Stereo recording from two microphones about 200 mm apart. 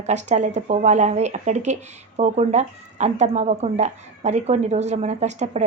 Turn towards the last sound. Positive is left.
turn(degrees=-35)  # may be behind; listen again after turning